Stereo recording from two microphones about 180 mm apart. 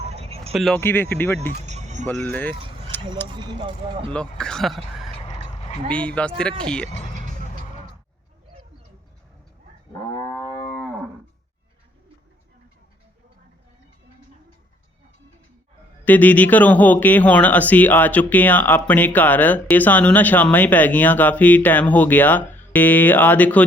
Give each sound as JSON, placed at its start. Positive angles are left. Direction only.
{"t": 0.1, "sound": "vehicle", "side_deg": -35}
{"t": 0.5, "sound": "speech", "side_deg": 0}
{"t": 0.8, "sound": "speech", "side_deg": 10}
{"t": 1.6, "sound": "vehicle", "side_deg": -40}
{"t": 2.0, "sound": "speech", "side_deg": 5}
{"t": 2.9, "sound": "a sound", "side_deg": 10}
{"t": 3.2, "sound": "speech", "side_deg": -25}
{"t": 4.1, "sound": "speech", "side_deg": 5}
{"t": 5.2, "sound": "dog", "side_deg": 35}
{"t": 5.9, "sound": "speech", "side_deg": 5}
{"t": 10.2, "sound": "wild animals", "side_deg": 15}
{"t": 16.0, "sound": "speech", "side_deg": 10}